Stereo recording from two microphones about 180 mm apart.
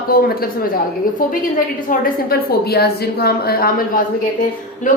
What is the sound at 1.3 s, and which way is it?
A woman's voice, 50° left (ahead or behind).